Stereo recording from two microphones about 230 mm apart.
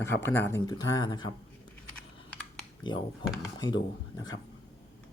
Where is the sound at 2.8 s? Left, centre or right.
Centre.